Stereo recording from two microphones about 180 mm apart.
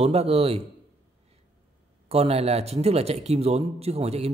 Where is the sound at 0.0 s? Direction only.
35° right (ahead or behind).